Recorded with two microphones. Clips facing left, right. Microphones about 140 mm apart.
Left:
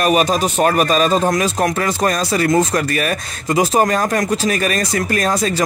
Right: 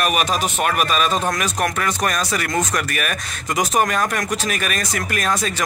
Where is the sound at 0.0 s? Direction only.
35° left (ahead or behind).